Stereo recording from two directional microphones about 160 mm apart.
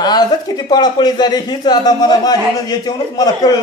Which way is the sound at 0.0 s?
25° left (ahead or behind).